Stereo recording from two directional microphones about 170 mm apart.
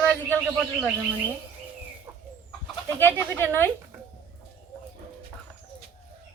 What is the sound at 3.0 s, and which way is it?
Speech, 10° left (ahead or behind).